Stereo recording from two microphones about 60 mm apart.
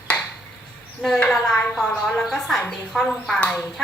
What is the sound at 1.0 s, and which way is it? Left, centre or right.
Speech, right.